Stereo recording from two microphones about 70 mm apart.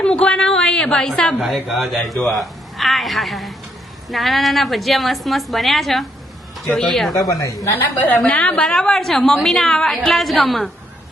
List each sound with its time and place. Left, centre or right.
0.0 s a woman's voice: centre
7.2 s a woman's voice: left
8.3 s a woman's voice: left
8.6 s a woman's voice: centre